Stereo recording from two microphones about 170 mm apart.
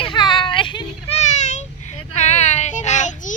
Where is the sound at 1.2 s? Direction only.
45° left (ahead or behind).